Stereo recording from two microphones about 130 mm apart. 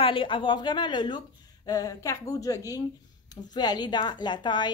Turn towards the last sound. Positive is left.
turn(degrees=35)  # may be behind; listen again after turning